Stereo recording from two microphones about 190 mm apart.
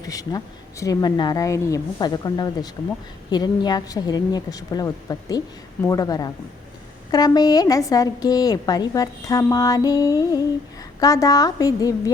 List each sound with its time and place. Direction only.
0.0 s a woman's voice: 20° left (ahead or behind)